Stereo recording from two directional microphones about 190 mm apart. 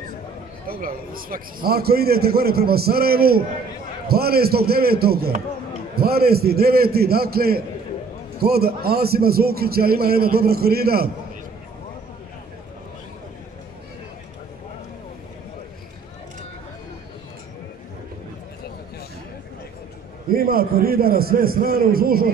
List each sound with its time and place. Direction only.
0.7 s a man's voice: 50° right (ahead or behind)
20.2 s a man's voice: 50° right (ahead or behind)